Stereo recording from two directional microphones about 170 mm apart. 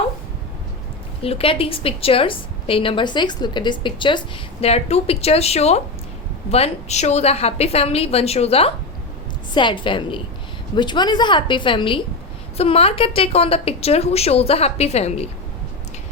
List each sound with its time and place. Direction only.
1.2 s a woman's voice: 35° left (ahead or behind)